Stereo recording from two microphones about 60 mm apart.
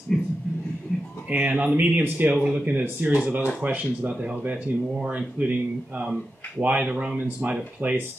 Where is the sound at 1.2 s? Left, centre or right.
Right.